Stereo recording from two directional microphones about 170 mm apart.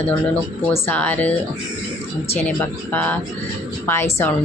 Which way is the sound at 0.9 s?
10° left (ahead or behind).